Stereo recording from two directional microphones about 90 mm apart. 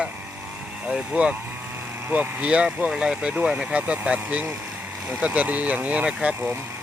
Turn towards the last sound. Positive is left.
turn(degrees=-15)  # may be behind; listen again after turning